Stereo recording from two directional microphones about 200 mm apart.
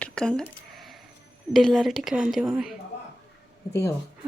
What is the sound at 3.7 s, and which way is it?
Speech, 15° left (ahead or behind).